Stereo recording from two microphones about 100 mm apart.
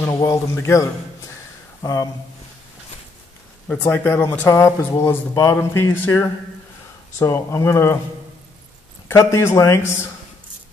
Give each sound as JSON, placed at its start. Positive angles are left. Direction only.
{"t": 0.2, "sound": "a man's voice", "side_deg": 30}
{"t": 3.6, "sound": "a man's voice", "side_deg": 10}
{"t": 9.1, "sound": "a man's voice", "side_deg": 30}